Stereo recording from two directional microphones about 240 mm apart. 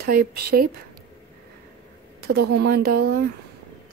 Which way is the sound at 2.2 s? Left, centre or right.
Right.